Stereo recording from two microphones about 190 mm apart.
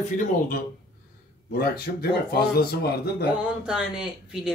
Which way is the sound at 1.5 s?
55° left (ahead or behind).